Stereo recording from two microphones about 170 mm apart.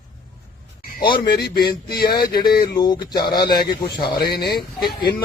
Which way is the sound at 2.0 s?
65° left (ahead or behind).